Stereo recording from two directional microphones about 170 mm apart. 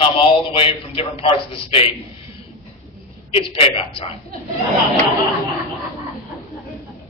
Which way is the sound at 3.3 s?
35° left (ahead or behind).